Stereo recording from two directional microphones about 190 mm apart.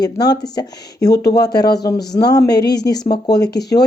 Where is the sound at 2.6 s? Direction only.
60° left (ahead or behind).